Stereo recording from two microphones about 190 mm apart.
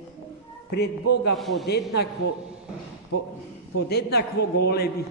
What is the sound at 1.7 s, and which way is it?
Speech, 60° left (ahead or behind).